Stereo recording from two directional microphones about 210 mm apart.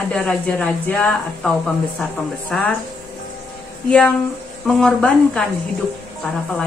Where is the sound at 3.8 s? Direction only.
5° left (ahead or behind).